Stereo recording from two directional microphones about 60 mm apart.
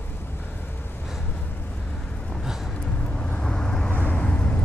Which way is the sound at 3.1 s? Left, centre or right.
Centre.